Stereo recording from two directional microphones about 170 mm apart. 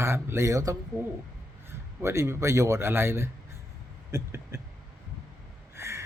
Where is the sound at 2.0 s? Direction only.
15° right (ahead or behind).